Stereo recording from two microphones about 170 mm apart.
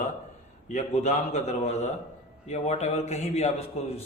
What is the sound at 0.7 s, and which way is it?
Speech, 40° left (ahead or behind).